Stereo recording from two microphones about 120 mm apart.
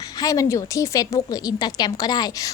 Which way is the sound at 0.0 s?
30° left (ahead or behind).